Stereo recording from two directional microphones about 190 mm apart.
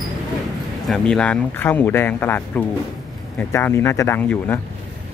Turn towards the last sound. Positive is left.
turn(degrees=10)  # may be behind; listen again after turning